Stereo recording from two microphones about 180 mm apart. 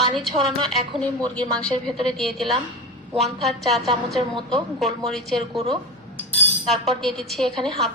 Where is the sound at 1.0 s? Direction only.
5° left (ahead or behind).